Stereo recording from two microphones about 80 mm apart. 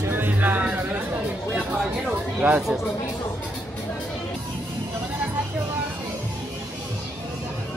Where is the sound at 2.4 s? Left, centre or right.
Centre.